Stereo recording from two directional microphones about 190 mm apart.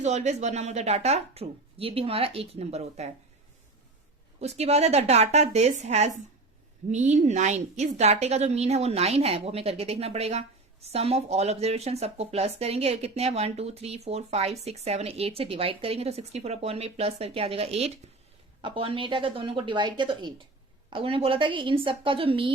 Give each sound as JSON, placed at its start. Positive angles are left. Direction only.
{"t": 0.0, "sound": "a woman's voice", "side_deg": -35}
{"t": 4.4, "sound": "a woman's voice", "side_deg": -35}